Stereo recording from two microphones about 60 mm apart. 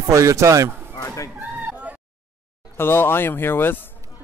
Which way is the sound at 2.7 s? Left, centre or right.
Left.